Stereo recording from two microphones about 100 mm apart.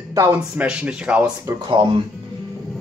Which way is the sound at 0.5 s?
15° right (ahead or behind).